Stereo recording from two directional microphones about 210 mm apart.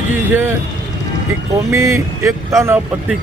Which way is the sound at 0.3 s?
10° right (ahead or behind).